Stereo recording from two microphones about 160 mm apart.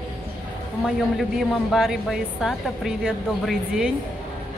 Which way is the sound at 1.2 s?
Centre (ahead or behind).